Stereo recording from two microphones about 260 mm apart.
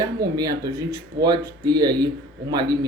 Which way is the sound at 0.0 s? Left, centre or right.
Centre.